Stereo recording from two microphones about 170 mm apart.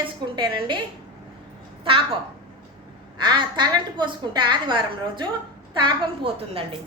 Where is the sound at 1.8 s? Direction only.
30° right (ahead or behind).